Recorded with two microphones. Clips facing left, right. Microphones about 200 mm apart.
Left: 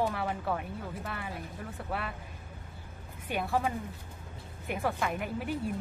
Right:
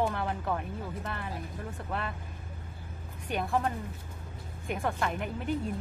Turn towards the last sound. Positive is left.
turn(degrees=5)  # may be behind; listen again after turning